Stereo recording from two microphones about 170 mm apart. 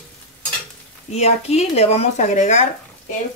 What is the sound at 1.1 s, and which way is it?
Speech, 40° left (ahead or behind).